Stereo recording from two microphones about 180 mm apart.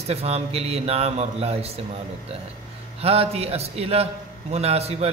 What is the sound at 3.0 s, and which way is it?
Speech, 35° right (ahead or behind).